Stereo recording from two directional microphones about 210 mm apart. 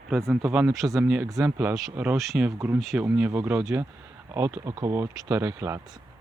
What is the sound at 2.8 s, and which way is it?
Speech, centre (ahead or behind).